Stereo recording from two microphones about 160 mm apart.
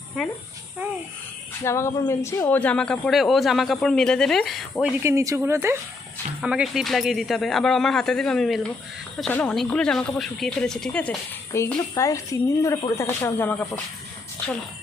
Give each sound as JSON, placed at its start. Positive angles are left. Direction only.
{"t": 1.6, "sound": "speech", "side_deg": 15}
{"t": 5.0, "sound": "speech", "side_deg": -20}
{"t": 6.4, "sound": "speech", "side_deg": -5}